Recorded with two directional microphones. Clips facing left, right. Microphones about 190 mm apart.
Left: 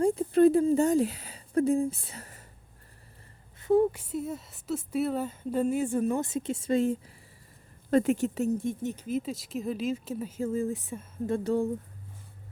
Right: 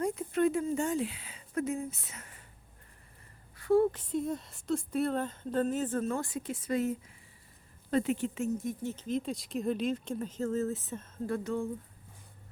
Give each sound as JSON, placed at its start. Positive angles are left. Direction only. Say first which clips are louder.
{"t": 0.0, "sound": "a sound", "louder": "left 8 dB", "side_deg": 30}
{"t": 3.6, "sound": "speech", "louder": "left 2 dB", "side_deg": 15}
{"t": 7.9, "sound": "speech", "louder": "left 5 dB", "side_deg": 45}
{"t": 8.5, "sound": "speech", "louder": "left 4 dB", "side_deg": 25}
{"t": 8.9, "sound": "speech", "louder": "left 2 dB", "side_deg": 10}
{"t": 11.3, "sound": "speech", "louder": "left 8 dB", "side_deg": 35}